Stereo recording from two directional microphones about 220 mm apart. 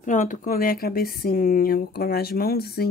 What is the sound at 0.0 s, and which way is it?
Speech, 35° left (ahead or behind).